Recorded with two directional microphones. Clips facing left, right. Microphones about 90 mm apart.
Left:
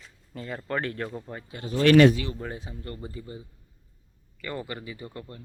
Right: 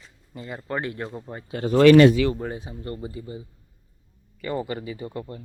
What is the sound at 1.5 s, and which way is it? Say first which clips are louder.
Speech: right 11 dB; 60° right (ahead or behind).